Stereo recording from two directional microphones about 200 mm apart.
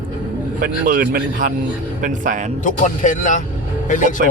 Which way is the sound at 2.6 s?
40° left (ahead or behind).